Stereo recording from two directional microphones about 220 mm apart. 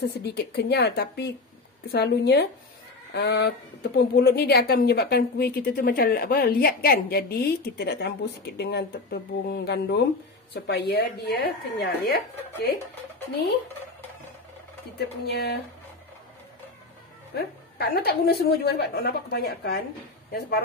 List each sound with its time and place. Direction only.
0.1 s speech: 45° left (ahead or behind)
15.0 s speech: 50° left (ahead or behind)
17.7 s speech: 45° left (ahead or behind)